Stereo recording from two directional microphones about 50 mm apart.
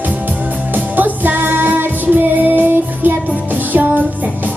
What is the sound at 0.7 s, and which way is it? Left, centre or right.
Music, right.